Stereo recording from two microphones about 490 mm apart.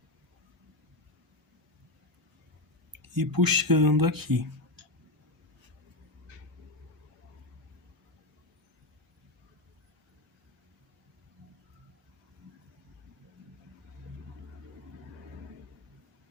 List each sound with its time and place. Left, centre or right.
3.2 s speech: right